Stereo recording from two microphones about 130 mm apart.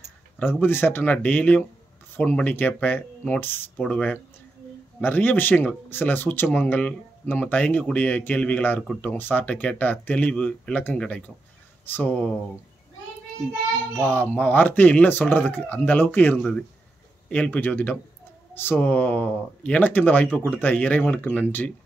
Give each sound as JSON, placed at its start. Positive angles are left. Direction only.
{"t": 0.4, "sound": "speech", "side_deg": 15}
{"t": 14.0, "sound": "speech", "side_deg": 10}